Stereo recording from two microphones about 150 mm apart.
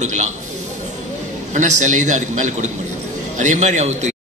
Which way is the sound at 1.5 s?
55° right (ahead or behind).